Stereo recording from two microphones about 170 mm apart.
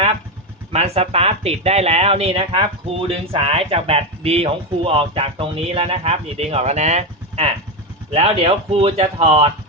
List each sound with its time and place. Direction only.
0.7 s speech: 35° right (ahead or behind)